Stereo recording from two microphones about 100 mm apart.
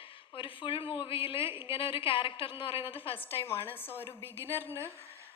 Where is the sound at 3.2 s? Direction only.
25° left (ahead or behind).